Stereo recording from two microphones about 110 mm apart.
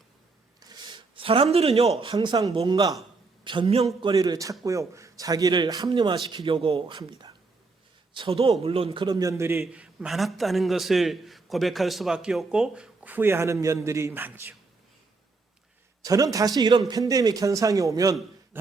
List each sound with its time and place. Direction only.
0.7 s a sound: 40° right (ahead or behind); by 1.9 s 65° right (ahead or behind)
2.0 s speech: 45° right (ahead or behind)
4.1 s a man's voice: 35° right (ahead or behind)
9.7 s a man's voice: 10° right (ahead or behind)
16.0 s a man's voice: 30° right (ahead or behind)
18.5 s throat clearing: 20° right (ahead or behind)